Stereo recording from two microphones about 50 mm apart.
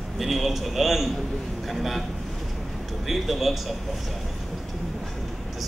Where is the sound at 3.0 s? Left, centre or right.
Centre.